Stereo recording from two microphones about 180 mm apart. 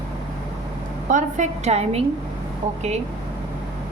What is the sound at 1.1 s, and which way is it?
Speech, 40° right (ahead or behind).